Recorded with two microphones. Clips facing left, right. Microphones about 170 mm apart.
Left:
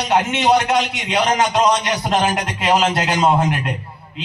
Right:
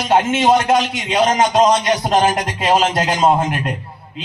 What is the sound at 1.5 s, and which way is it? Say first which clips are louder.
A man's voice: right 3 dB; 35° right (ahead or behind).